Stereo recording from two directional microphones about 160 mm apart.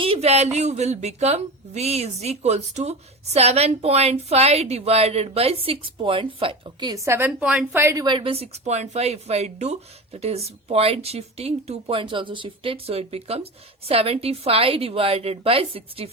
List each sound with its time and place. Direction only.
0.0 s speech: 40° right (ahead or behind); by 8.0 s 15° right (ahead or behind)
8.0 s speech: 30° right (ahead or behind)